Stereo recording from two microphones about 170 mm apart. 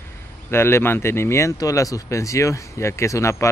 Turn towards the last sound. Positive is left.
turn(degrees=15)  # may be behind; listen again after turning